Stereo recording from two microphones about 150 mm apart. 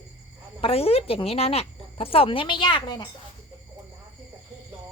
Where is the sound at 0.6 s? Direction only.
40° left (ahead or behind).